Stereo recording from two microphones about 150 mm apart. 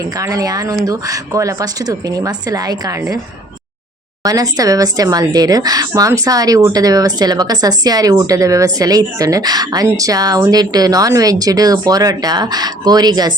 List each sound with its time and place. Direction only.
0.2 s speech: 20° right (ahead or behind)
4.2 s speech: 25° right (ahead or behind)